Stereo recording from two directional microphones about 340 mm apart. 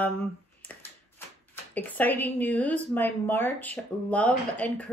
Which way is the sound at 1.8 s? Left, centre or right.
Centre.